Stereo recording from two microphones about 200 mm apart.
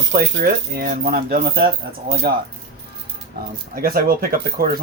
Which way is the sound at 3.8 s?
50° right (ahead or behind).